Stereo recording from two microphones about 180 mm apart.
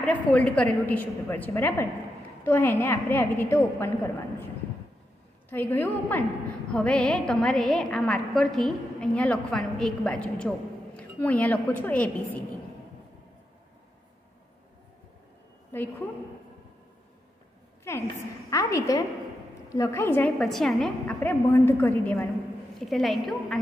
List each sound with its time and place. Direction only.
0.0 s a woman's voice: 5° left (ahead or behind)
5.5 s a woman's voice: 10° left (ahead or behind)
15.7 s a woman's voice: 10° left (ahead or behind)
18.5 s a woman's voice: 15° left (ahead or behind)
22.8 s a woman's voice: centre (ahead or behind)